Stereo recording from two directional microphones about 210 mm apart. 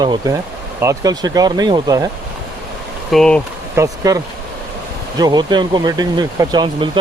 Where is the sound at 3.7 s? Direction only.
15° right (ahead or behind).